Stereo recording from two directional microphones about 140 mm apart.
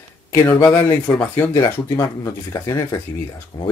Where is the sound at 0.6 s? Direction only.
15° left (ahead or behind).